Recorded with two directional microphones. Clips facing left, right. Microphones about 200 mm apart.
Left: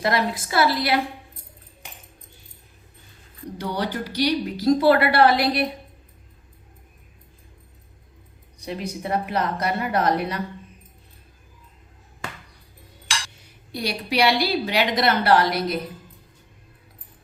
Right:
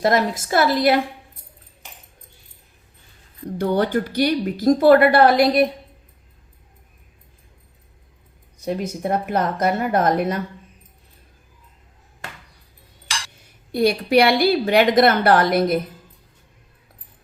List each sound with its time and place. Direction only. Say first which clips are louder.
0.0 s speech: right 4 dB; 45° right (ahead or behind)
3.6 s speech: right 8 dB; 50° right (ahead or behind)
8.5 s speech: right 5 dB; 45° right (ahead or behind)
13.7 s speech: right 8 dB; 50° right (ahead or behind)